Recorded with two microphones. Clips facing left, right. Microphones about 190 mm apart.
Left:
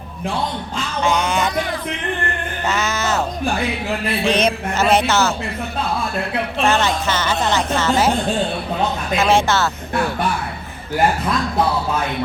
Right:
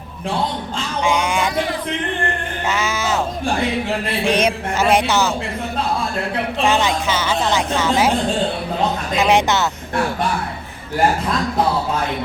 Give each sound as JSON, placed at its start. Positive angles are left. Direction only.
{"t": 1.0, "sound": "music", "side_deg": -10}
{"t": 2.6, "sound": "a sound", "side_deg": -10}
{"t": 4.3, "sound": "a woman's voice", "side_deg": -10}
{"t": 6.7, "sound": "a woman's voice", "side_deg": -10}
{"t": 9.1, "sound": "a woman's voice", "side_deg": -15}